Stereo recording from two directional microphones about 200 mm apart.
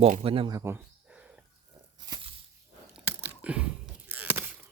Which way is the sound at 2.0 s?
25° right (ahead or behind).